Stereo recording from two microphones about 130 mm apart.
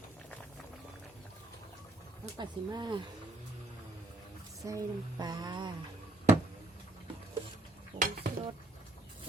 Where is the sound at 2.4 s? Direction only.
35° right (ahead or behind).